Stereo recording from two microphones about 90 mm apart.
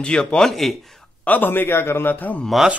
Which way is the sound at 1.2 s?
20° left (ahead or behind).